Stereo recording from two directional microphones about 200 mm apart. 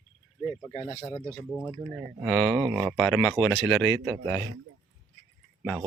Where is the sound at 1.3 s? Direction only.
5° left (ahead or behind).